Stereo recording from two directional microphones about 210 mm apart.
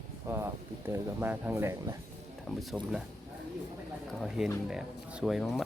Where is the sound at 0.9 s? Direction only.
10° right (ahead or behind).